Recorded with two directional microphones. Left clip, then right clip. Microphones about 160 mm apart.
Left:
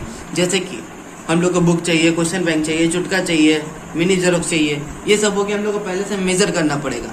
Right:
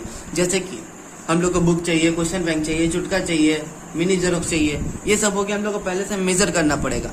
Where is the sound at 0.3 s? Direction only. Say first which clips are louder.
Left 3 dB; 45° right (ahead or behind).